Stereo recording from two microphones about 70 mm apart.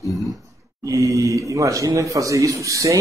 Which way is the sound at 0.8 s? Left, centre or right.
Right.